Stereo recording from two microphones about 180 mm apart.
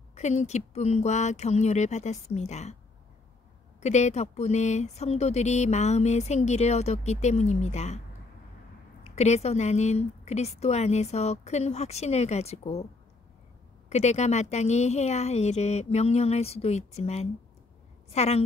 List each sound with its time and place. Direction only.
0.1 s speech: 40° left (ahead or behind)
3.8 s speech: 40° left (ahead or behind)
9.0 s speech: 40° left (ahead or behind)
13.8 s speech: 40° left (ahead or behind)